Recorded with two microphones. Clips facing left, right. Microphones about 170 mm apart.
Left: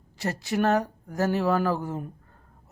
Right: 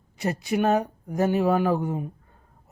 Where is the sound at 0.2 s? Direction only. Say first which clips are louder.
Right 2 dB; 20° right (ahead or behind).